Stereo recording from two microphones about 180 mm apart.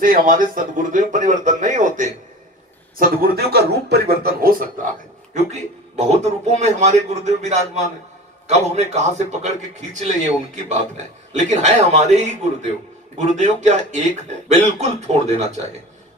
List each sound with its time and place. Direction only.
0.0 s speech: 50° right (ahead or behind)
3.0 s a man's voice: 55° right (ahead or behind)
5.3 s a man's voice: 40° right (ahead or behind)